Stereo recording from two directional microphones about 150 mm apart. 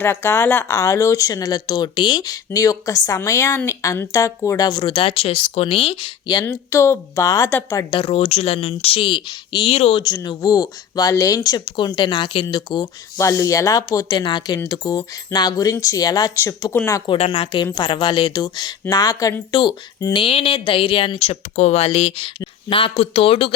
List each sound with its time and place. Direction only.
0.0 s speech: 15° left (ahead or behind); by 6.4 s 30° left (ahead or behind)
6.4 s a woman's voice: 15° left (ahead or behind)
7.9 s speech: 35° left (ahead or behind)
10.0 s speech: 25° left (ahead or behind)
13.1 s a woman's voice: 20° left (ahead or behind)
17.1 s speech: 40° left (ahead or behind)
20.2 s speech: 35° left (ahead or behind)